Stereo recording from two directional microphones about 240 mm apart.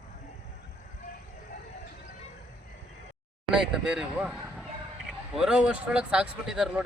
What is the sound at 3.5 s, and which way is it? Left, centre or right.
Speech, centre.